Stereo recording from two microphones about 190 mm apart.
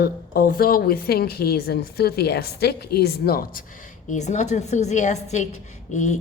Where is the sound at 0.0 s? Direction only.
50° left (ahead or behind).